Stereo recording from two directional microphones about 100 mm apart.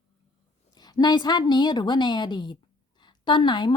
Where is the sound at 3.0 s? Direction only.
50° left (ahead or behind).